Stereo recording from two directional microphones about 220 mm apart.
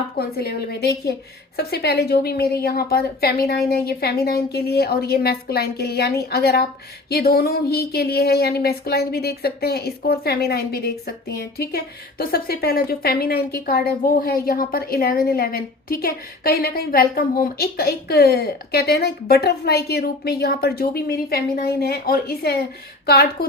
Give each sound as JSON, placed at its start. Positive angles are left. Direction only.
{"t": 0.2, "sound": "speech", "side_deg": 45}